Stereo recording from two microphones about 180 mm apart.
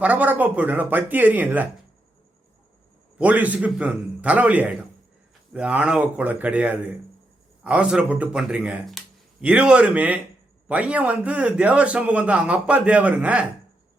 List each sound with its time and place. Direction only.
0.0 s a man's voice: 10° right (ahead or behind)
3.2 s a man's voice: 10° right (ahead or behind)